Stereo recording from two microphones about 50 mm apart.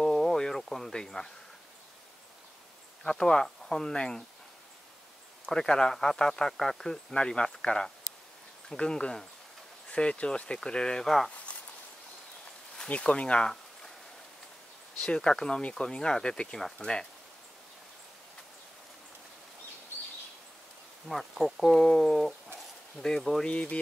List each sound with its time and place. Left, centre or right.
0.0 s a sound: centre
3.0 s speech: centre
5.5 s speech: centre
12.7 s speech: centre
15.0 s speech: centre
21.1 s speech: centre
23.4 s speech: left